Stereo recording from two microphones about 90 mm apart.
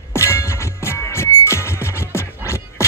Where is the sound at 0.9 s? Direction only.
30° left (ahead or behind).